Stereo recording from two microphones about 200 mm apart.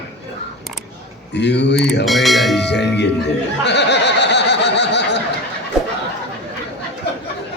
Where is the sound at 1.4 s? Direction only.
60° left (ahead or behind).